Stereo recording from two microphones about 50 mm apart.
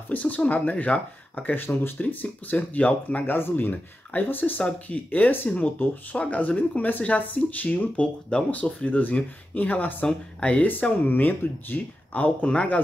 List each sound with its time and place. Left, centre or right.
0.1 s speech: left
2.0 s speech: left
6.1 s speech: left
10.0 s speech: left
10.7 s speech: left